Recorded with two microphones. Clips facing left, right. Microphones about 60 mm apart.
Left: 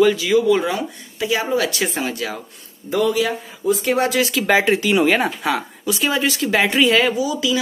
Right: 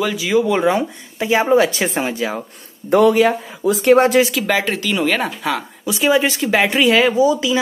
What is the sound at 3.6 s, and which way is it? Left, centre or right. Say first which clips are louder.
Speech: right 5 dB; right.